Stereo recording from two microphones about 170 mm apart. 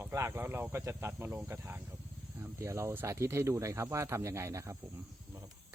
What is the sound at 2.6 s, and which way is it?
Speech, 15° right (ahead or behind).